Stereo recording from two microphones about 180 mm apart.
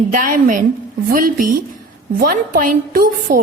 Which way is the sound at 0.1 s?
45° right (ahead or behind).